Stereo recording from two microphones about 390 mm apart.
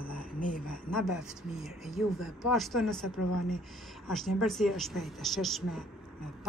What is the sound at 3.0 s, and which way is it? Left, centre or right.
Speech, left.